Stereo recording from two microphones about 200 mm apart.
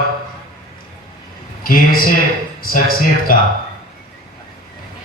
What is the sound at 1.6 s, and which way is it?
Mantra, 45° left (ahead or behind).